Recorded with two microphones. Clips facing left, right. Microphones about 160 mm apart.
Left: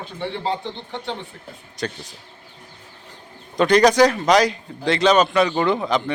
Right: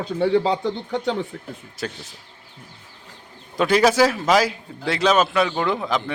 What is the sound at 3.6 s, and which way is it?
A man's voice, 5° right (ahead or behind).